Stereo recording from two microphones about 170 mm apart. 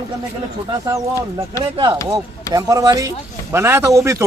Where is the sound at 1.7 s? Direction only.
30° right (ahead or behind).